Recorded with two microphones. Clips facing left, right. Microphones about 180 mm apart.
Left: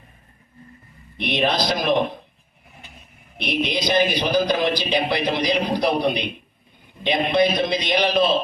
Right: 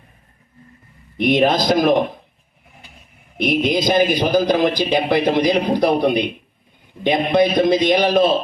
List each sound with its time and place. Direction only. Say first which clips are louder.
1.2 s a man's voice: right 6 dB; 45° right (ahead or behind)
3.3 s a man's voice: right 6 dB; 50° right (ahead or behind)